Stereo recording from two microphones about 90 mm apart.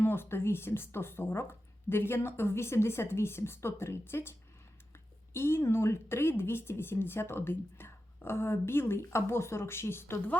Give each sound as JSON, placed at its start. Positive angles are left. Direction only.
{"t": 0.0, "sound": "speech", "side_deg": 25}